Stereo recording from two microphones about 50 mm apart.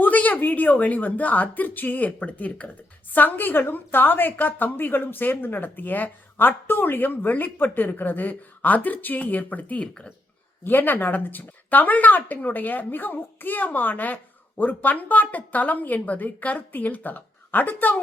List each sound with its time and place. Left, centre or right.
0.0 s speech: left
3.1 s speech: left
9.8 s speech: centre
10.6 s speech: left